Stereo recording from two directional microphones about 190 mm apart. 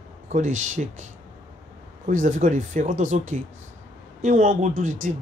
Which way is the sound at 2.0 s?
40° right (ahead or behind).